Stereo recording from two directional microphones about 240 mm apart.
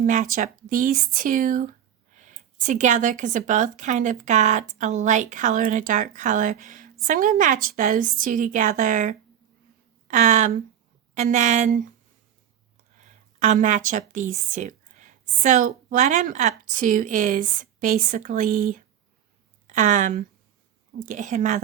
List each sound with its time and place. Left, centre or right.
0.0 s a woman's voice: right
13.0 s a sound: right
14.1 s a woman's voice: right